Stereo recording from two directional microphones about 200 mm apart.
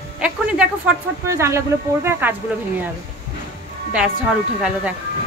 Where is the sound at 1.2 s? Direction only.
15° right (ahead or behind).